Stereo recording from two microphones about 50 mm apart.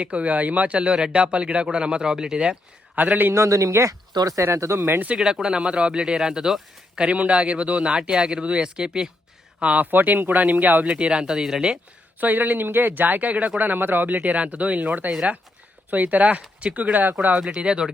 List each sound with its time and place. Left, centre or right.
0.0 s speech: right; by 2.4 s centre
3.0 s speech: right
3.3 s speech: right
5.1 s speech: centre
9.6 s speech: right
9.8 s speech: right
10.8 s speech: right
12.2 s speech: right
14.1 s speech: right
17.5 s speech: centre